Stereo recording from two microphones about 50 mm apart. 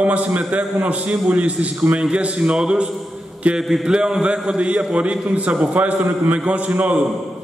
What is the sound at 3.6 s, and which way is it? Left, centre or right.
Speech, centre.